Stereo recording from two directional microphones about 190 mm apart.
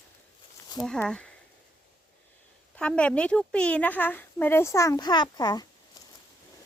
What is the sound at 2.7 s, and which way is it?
A woman's voice, 5° left (ahead or behind).